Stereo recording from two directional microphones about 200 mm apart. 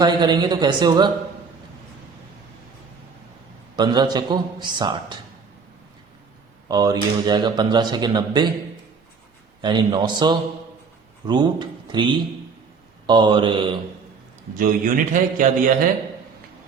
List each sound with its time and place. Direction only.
0.0 s speech: 20° right (ahead or behind)
3.8 s speech: 20° right (ahead or behind)
6.7 s speech: 20° right (ahead or behind)
9.6 s speech: 20° right (ahead or behind)
14.5 s a man's voice: 45° right (ahead or behind)